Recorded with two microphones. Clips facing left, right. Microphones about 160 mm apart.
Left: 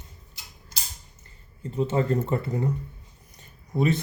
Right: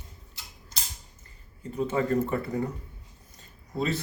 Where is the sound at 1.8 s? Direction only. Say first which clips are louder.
Left 2 dB; 30° left (ahead or behind).